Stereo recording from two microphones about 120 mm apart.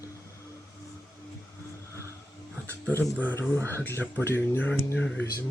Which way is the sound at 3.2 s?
15° left (ahead or behind).